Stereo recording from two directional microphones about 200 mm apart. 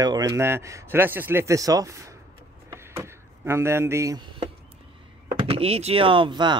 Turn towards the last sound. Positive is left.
turn(degrees=-20)  # may be behind; listen again after turning